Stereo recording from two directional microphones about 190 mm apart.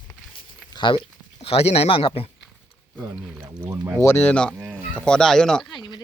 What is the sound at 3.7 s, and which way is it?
Speech, 20° right (ahead or behind).